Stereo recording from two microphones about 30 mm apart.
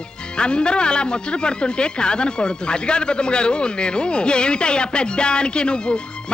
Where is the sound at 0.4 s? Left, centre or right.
Left.